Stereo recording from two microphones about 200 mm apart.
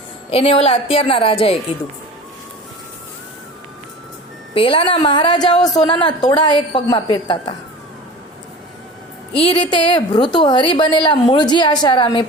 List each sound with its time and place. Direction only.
0.3 s a woman's voice: 30° left (ahead or behind)
4.5 s a woman's voice: 25° left (ahead or behind)
9.4 s a woman's voice: 25° left (ahead or behind)